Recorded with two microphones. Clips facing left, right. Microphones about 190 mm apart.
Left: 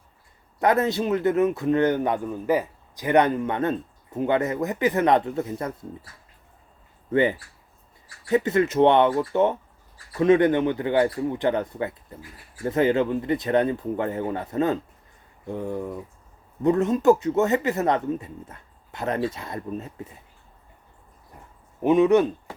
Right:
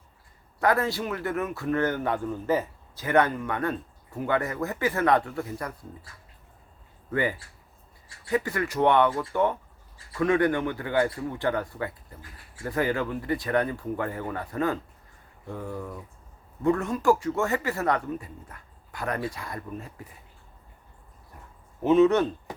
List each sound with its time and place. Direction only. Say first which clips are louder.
0.6 s speech: left 4 dB; 20° left (ahead or behind)
7.1 s speech: left 6 dB; 25° left (ahead or behind)
8.0 s a sound: left 1 dB; 25° right (ahead or behind)
8.3 s speech: left 6 dB; 20° left (ahead or behind)
21.8 s speech: left 2 dB; 15° left (ahead or behind)